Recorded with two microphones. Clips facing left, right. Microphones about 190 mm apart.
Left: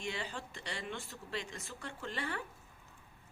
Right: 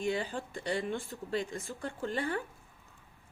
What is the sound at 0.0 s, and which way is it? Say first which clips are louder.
Speech: right 8 dB; 35° right (ahead or behind).